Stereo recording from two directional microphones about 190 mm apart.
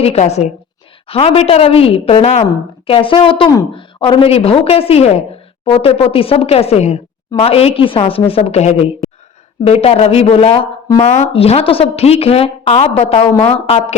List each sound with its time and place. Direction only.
0.0 s a woman's voice: 35° left (ahead or behind)